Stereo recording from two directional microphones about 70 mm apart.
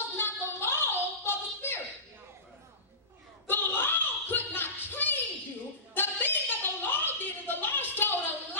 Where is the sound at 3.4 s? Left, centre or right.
Left.